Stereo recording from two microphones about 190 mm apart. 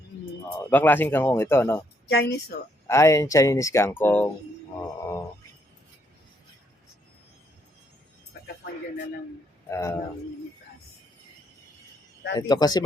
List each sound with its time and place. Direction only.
0.6 s speech: 10° left (ahead or behind)
2.0 s speech: 60° left (ahead or behind)
2.8 s speech: 15° left (ahead or behind)
4.8 s grunt: 15° left (ahead or behind)
9.6 s speech: 15° left (ahead or behind)
12.4 s speech: 20° left (ahead or behind)